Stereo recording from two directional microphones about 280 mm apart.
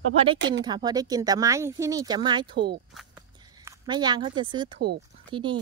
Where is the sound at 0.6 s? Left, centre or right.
Centre.